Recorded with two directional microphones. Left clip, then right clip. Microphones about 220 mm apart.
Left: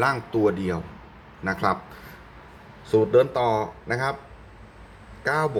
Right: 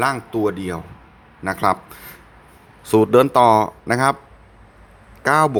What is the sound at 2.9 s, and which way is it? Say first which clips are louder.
Speech: right 5 dB; 50° right (ahead or behind).